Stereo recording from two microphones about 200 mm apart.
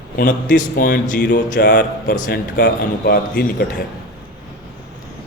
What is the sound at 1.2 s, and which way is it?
A man's voice, 50° left (ahead or behind).